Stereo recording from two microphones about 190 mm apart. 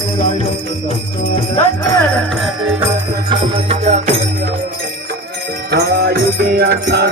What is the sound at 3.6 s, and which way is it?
Music, 35° right (ahead or behind).